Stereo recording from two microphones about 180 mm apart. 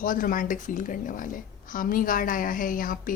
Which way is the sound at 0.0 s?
50° left (ahead or behind).